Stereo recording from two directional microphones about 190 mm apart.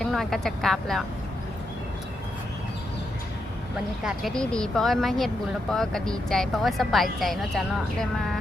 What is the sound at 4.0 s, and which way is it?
Speech, centre (ahead or behind).